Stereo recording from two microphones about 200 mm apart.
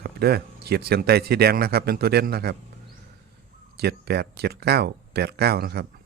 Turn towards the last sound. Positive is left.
turn(degrees=-55)  # may be behind; listen again after turning